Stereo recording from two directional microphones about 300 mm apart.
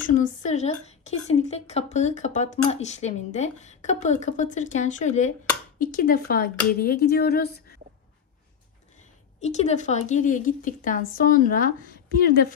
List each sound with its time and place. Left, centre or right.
0.0 s speech: left
9.4 s speech: left